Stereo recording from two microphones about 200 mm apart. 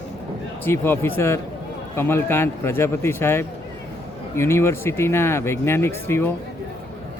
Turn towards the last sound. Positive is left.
turn(degrees=10)  # may be behind; listen again after turning